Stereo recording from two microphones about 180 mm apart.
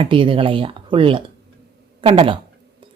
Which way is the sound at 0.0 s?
30° right (ahead or behind).